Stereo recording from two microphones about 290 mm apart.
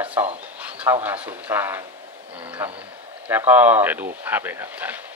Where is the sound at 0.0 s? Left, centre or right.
Centre.